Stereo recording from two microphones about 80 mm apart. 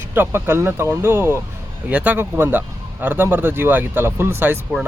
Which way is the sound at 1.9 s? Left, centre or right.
Centre.